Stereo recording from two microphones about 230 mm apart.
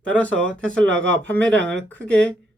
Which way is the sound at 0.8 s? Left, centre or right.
Right.